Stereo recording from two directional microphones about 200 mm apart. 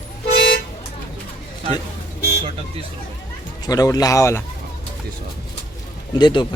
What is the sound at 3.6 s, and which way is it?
Speech, 20° left (ahead or behind).